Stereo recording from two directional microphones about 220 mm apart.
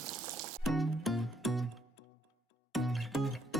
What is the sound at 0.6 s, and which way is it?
Music, centre (ahead or behind).